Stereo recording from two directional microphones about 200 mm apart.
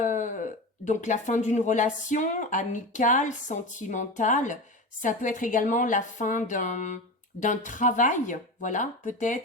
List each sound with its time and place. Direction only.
0.0 s speech: 40° left (ahead or behind)